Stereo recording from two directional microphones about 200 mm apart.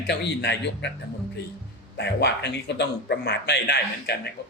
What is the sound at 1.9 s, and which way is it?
A man's voice, 60° left (ahead or behind).